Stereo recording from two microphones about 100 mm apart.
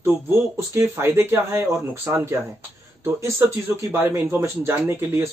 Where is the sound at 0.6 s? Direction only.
25° right (ahead or behind).